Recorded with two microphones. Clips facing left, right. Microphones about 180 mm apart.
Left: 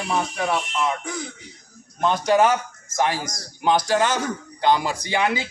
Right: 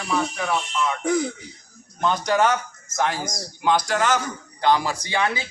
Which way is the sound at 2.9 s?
10° left (ahead or behind).